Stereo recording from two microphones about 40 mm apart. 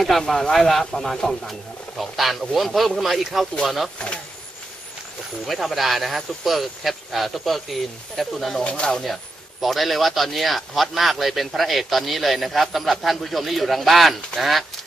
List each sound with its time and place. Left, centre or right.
0.0 s speech: centre
5.5 s speech: centre
8.6 s speech: left
8.9 s speech: centre
14.3 s speech: left